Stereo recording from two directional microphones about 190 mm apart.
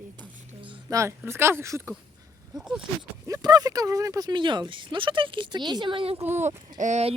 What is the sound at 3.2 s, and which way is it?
Speech, 20° right (ahead or behind).